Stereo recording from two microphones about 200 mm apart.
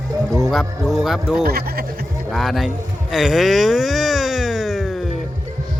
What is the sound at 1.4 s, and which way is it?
Speech, 50° right (ahead or behind).